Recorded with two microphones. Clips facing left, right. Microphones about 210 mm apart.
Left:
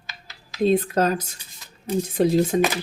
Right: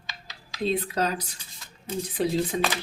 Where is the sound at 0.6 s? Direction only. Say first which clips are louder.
Left 7 dB; 50° left (ahead or behind).